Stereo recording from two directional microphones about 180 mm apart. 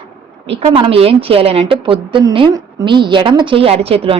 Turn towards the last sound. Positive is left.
turn(degrees=-35)  # may be behind; listen again after turning